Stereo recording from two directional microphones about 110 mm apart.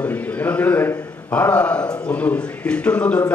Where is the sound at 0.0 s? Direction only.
15° left (ahead or behind).